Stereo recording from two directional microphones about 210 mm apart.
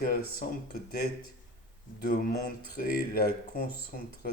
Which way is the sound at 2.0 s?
45° left (ahead or behind).